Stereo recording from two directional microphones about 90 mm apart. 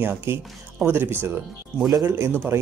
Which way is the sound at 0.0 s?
25° right (ahead or behind).